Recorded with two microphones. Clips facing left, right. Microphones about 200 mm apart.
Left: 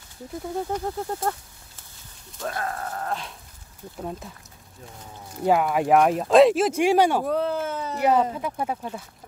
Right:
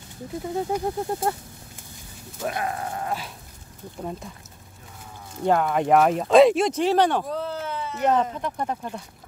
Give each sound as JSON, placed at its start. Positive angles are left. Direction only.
{"t": 0.4, "sound": "speech", "side_deg": -5}
{"t": 2.3, "sound": "speech", "side_deg": -15}
{"t": 5.4, "sound": "speech", "side_deg": 5}
{"t": 7.2, "sound": "a sound", "side_deg": 55}
{"t": 8.0, "sound": "speech", "side_deg": 10}